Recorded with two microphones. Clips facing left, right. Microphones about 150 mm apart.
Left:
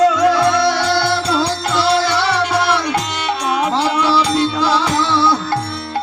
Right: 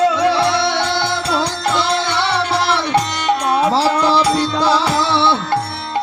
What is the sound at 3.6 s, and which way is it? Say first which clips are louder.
Music: right 2 dB; 35° right (ahead or behind).